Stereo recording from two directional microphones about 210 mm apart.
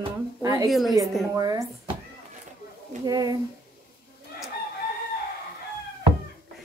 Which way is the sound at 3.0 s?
20° right (ahead or behind).